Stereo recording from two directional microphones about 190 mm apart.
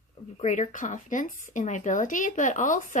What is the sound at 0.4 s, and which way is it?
Speech, 40° left (ahead or behind).